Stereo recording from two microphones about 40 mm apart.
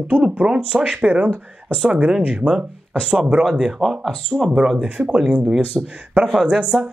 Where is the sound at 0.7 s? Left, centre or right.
Right.